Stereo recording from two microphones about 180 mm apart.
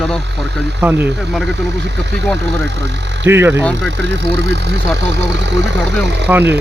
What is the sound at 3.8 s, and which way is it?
Speech, 75° right (ahead or behind).